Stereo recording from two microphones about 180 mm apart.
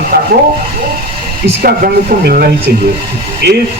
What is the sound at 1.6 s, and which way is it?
A man's voice, 55° right (ahead or behind).